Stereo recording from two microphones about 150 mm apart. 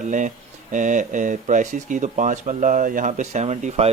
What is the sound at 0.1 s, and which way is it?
A man's voice, 55° right (ahead or behind).